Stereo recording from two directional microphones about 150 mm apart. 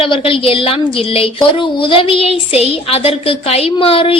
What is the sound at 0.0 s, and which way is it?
A woman's voice, 40° left (ahead or behind).